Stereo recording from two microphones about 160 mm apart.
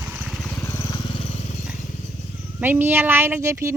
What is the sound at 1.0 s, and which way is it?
Vehicle, 35° left (ahead or behind).